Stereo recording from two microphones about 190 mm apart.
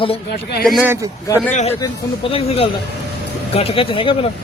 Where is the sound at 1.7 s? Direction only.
25° left (ahead or behind).